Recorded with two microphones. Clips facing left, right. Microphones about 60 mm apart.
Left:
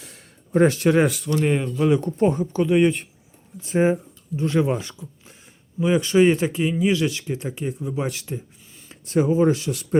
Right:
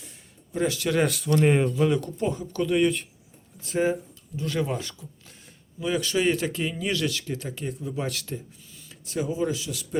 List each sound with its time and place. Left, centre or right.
0.5 s speech: left
1.0 s speech: centre
2.0 s speech: left
2.5 s speech: left
2.8 s speech: left
8.9 s speech: left